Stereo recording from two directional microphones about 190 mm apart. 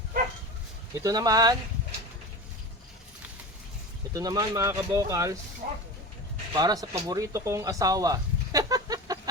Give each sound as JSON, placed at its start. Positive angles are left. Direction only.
{"t": 0.9, "sound": "speech", "side_deg": -20}
{"t": 4.1, "sound": "speech", "side_deg": -20}
{"t": 5.6, "sound": "speech", "side_deg": -45}
{"t": 6.5, "sound": "speech", "side_deg": -20}